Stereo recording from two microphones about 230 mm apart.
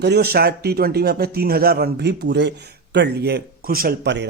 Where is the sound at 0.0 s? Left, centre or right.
Right.